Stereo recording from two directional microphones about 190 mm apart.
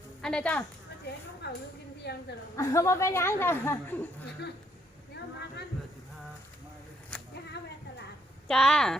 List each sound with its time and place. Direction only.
0.2 s speech: 5° left (ahead or behind)
1.4 s a woman's voice: 60° left (ahead or behind)
2.6 s speech: 15° left (ahead or behind)
7.1 s a sound: 5° left (ahead or behind)
8.4 s speech: 5° left (ahead or behind)